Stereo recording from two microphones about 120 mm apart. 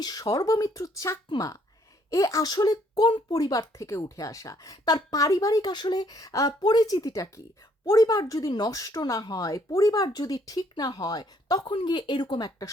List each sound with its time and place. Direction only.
0.0 s speech: 30° left (ahead or behind)